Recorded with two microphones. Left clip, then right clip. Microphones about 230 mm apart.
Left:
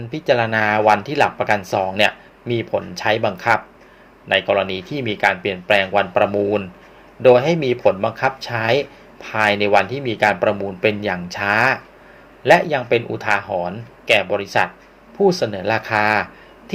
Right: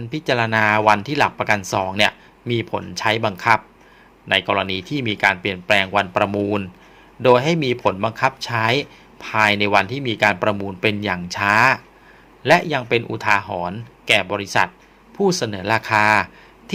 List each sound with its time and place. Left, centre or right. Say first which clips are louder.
0.1 s speech: left 2 dB; right